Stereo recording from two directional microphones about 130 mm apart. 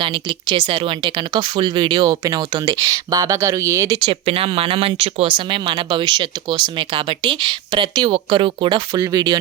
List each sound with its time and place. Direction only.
0.0 s speech: 35° right (ahead or behind)
4.1 s speech: 45° right (ahead or behind)